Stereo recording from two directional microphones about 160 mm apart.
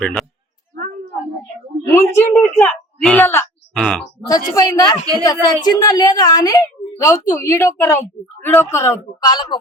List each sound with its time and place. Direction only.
0.0 s speech: 5° left (ahead or behind)
0.7 s a sound: 65° right (ahead or behind)
1.9 s a woman's voice: 15° left (ahead or behind)
4.3 s a woman's voice: 20° left (ahead or behind)